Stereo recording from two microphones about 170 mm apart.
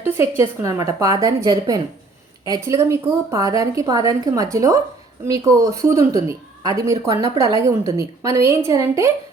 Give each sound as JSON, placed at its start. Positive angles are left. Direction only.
{"t": 0.0, "sound": "a woman's voice", "side_deg": -15}